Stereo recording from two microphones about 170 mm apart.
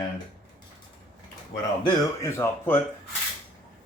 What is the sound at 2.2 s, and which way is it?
Speech, 15° left (ahead or behind).